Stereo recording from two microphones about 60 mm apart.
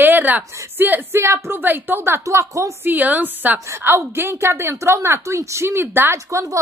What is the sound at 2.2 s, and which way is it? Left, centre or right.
Speech, right.